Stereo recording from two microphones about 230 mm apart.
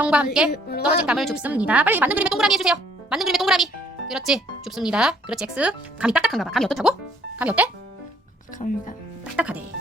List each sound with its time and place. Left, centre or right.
0.0 s a woman's voice: centre
8.5 s speech: left
9.3 s a woman's voice: centre